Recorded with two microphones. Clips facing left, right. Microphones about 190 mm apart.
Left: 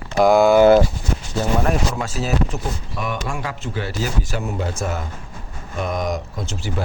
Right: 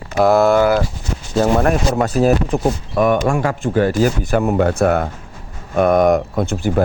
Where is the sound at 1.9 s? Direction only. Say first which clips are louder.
Right 9 dB; 55° right (ahead or behind).